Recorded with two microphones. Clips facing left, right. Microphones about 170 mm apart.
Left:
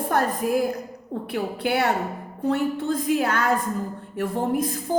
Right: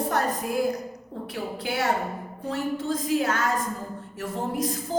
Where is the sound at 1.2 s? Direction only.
60° left (ahead or behind).